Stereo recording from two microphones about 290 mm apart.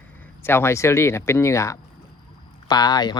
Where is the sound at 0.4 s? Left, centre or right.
Centre.